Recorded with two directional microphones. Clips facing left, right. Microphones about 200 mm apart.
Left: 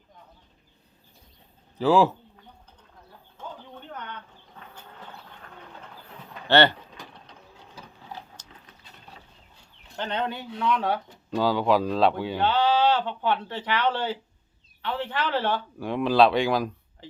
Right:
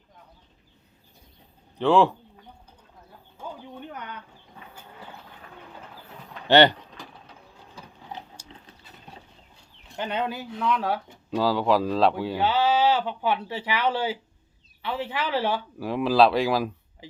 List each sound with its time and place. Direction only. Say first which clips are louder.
1.8 s speech: even; 5° left (ahead or behind)
3.3 s a sound: right 3 dB; 10° right (ahead or behind)
4.7 s vehicle: right 1 dB; 10° right (ahead or behind)
6.5 s speech: right 3 dB; 15° right (ahead or behind)
6.9 s vehicle: right 1 dB; centre (ahead or behind)
8.4 s a sound: right 5 dB; 10° right (ahead or behind)
10.0 s speech: right 1 dB; 5° right (ahead or behind)